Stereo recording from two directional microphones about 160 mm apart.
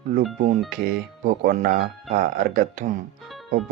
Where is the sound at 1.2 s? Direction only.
60° right (ahead or behind).